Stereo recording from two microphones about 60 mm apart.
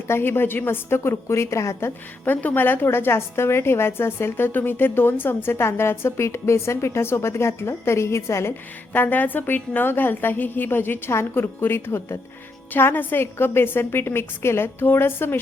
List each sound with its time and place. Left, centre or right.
0.1 s a woman's voice: left
2.2 s a woman's voice: left
8.9 s a woman's voice: left
12.7 s a woman's voice: left